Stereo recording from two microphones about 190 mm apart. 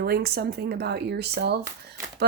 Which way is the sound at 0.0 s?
55° right (ahead or behind).